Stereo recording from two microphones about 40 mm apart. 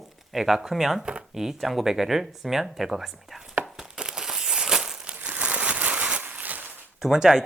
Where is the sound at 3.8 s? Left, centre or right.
Centre.